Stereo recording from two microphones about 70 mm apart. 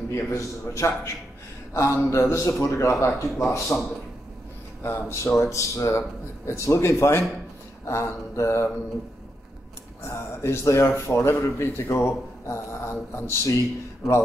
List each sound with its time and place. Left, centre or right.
0.1 s speech: left
10.0 s speech: left